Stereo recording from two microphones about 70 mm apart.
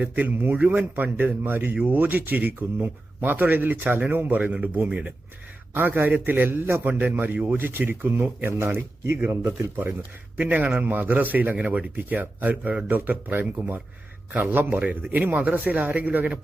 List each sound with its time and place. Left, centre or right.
0.0 s a man's voice: right
10.3 s speech: right